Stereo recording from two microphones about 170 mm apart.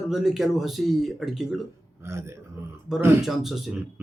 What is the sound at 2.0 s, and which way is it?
Speech, 15° right (ahead or behind).